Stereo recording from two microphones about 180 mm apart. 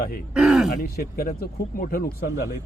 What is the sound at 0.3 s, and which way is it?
Speech, centre (ahead or behind).